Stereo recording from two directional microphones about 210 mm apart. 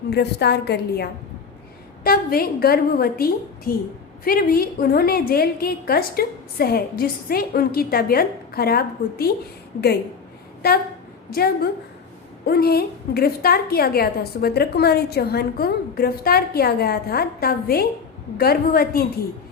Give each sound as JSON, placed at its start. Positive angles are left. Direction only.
{"t": 0.1, "sound": "a woman's voice", "side_deg": 50}
{"t": 10.6, "sound": "a woman's voice", "side_deg": 45}